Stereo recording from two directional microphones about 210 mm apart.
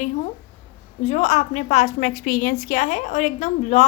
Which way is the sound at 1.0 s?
30° left (ahead or behind).